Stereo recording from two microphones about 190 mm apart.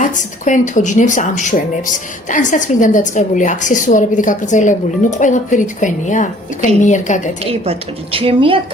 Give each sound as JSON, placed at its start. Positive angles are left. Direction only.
{"t": 0.0, "sound": "speech", "side_deg": 40}
{"t": 7.4, "sound": "a woman's voice", "side_deg": -30}